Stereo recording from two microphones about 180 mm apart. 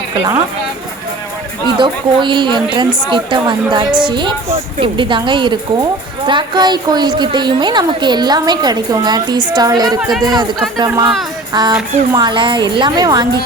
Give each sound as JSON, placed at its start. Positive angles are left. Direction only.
{"t": 1.8, "sound": "a woman's voice", "side_deg": -25}